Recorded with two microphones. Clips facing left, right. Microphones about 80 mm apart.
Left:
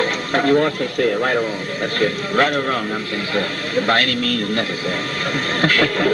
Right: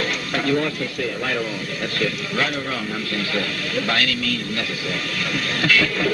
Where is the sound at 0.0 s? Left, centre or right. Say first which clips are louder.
Left 5 dB; left.